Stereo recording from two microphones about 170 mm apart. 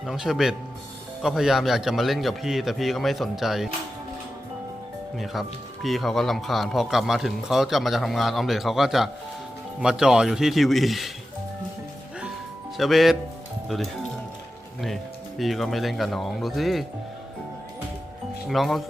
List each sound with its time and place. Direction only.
0.0 s speech: centre (ahead or behind)
5.1 s speech: centre (ahead or behind)
12.7 s speech: centre (ahead or behind)
15.4 s speech: centre (ahead or behind)
18.4 s speech: centre (ahead or behind)